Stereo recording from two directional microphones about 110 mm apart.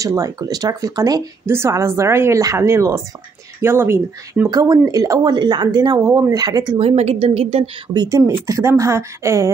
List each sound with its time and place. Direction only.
0.0 s a woman's voice: 30° right (ahead or behind)
1.4 s a woman's voice: 25° right (ahead or behind)
4.5 s a woman's voice: 35° right (ahead or behind)
6.8 s a woman's voice: 70° right (ahead or behind)
7.9 s a woman's voice: 40° right (ahead or behind)
8.3 s a woman's voice: 25° right (ahead or behind)